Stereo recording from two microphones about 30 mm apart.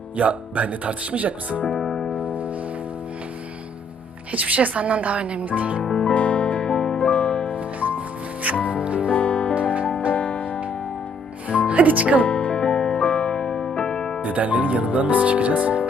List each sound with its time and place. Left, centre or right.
0.2 s speech: right
1.7 s music: centre
2.1 s music: right
4.3 s speech: right
5.8 s speech: left
6.1 s music: left
7.5 s music: right
9.1 s music: left
11.4 s music: right
12.2 s music: left
12.6 s music: left
13.0 s music: left
14.2 s speech: right